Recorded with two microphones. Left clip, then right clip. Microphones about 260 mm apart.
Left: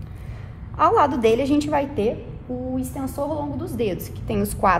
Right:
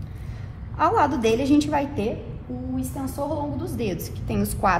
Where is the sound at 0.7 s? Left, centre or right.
Left.